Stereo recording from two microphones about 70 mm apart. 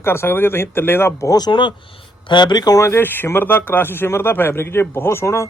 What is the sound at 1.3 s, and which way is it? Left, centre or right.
Speech, left.